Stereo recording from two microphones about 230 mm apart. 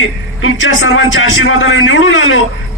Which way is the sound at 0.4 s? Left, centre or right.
Left.